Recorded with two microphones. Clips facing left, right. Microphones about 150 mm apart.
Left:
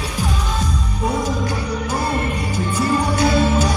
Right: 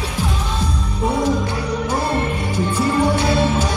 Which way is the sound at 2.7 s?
25° right (ahead or behind).